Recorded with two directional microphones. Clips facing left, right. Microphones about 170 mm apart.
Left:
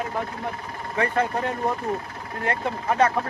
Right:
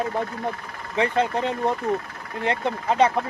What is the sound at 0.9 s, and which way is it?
Speech, 20° right (ahead or behind).